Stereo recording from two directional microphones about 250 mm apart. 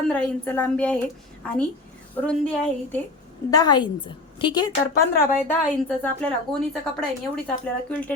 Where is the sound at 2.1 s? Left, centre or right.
Centre.